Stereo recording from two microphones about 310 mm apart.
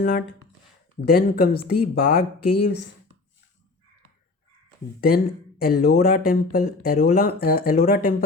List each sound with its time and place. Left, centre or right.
1.0 s speech: left
4.9 s speech: left